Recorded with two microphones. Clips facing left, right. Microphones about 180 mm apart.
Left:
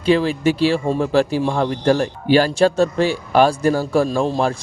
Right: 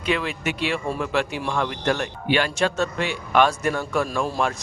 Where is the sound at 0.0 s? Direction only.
30° left (ahead or behind).